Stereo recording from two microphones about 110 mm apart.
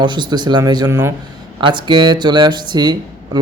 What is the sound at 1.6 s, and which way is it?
Speech, 45° right (ahead or behind).